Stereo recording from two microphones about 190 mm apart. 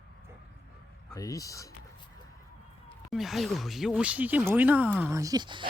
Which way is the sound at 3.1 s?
Centre (ahead or behind).